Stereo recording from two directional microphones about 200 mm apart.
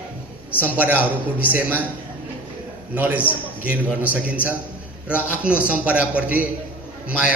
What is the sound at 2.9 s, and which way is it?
A man's voice, 10° right (ahead or behind).